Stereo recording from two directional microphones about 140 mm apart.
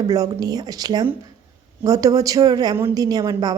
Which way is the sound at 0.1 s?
25° right (ahead or behind).